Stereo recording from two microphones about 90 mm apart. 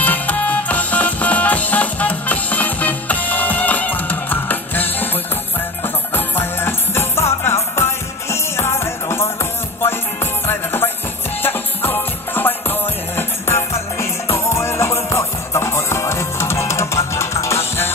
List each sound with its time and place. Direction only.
0.0 s music: 20° left (ahead or behind)